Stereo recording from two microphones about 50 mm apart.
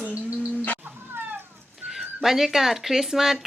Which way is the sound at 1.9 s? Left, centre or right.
Centre.